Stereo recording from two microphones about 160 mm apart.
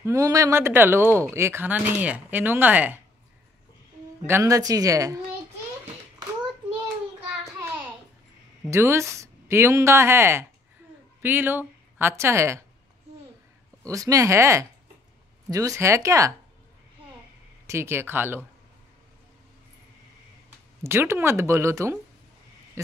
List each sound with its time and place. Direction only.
0.0 s speech: 20° right (ahead or behind)
4.3 s speech: 20° right (ahead or behind)
8.6 s speech: 15° right (ahead or behind)
13.8 s speech: 20° right (ahead or behind)
17.6 s speech: 15° right (ahead or behind)
20.8 s speech: 15° right (ahead or behind)